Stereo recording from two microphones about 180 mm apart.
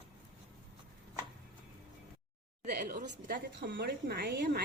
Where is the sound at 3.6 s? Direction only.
70° right (ahead or behind).